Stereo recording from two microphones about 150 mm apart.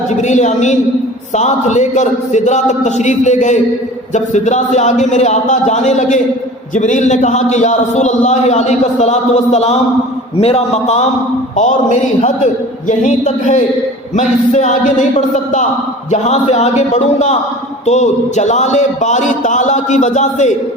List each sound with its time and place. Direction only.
0.1 s speech: 50° left (ahead or behind)